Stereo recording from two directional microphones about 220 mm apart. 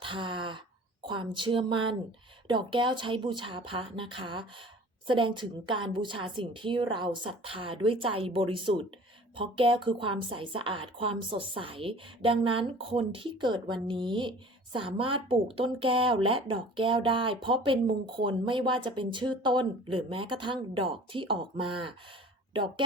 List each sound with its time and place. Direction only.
0.0 s speech: 20° right (ahead or behind)